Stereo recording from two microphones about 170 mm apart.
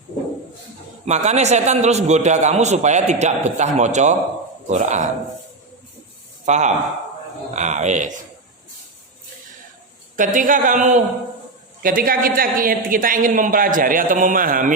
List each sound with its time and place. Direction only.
1.0 s a man's voice: 40° right (ahead or behind)
6.4 s a man's voice: 45° right (ahead or behind)
10.2 s a man's voice: 50° right (ahead or behind)